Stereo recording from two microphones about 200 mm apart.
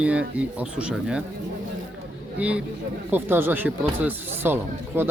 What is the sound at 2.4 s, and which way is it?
A man's voice, 5° right (ahead or behind).